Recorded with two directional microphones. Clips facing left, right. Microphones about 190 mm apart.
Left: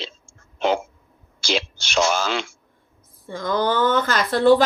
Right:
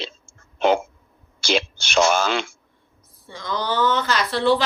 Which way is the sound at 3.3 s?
50° left (ahead or behind).